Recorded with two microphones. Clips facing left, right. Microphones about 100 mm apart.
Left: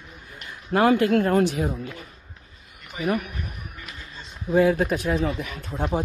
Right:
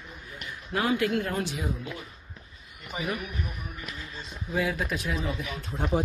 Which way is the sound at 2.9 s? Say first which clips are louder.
Left 5 dB; 25° right (ahead or behind).